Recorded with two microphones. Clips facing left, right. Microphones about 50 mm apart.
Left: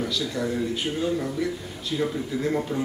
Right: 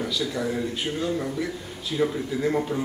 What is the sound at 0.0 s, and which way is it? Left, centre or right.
Speech, centre.